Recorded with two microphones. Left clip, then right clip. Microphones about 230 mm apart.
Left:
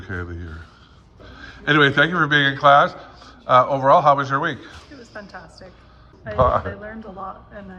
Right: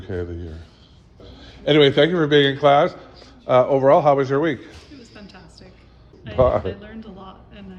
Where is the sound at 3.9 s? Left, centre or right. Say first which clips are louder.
Left 4 dB; left.